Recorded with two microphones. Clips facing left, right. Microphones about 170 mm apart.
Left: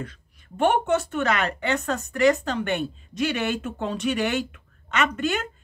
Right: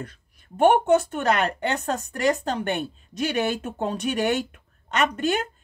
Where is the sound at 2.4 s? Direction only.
45° right (ahead or behind).